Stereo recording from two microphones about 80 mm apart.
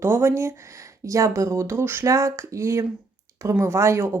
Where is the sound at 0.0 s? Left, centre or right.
Right.